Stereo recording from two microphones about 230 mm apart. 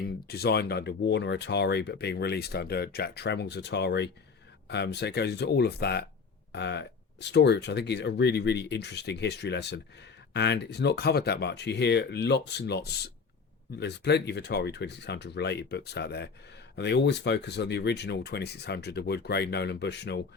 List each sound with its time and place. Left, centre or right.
0.0 s speech: left